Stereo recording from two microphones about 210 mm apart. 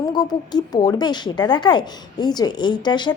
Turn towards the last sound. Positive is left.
turn(degrees=20)  # may be behind; listen again after turning